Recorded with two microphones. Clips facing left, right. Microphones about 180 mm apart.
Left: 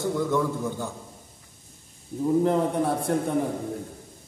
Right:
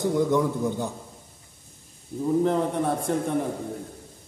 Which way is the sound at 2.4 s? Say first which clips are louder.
Left 1 dB; 5° left (ahead or behind).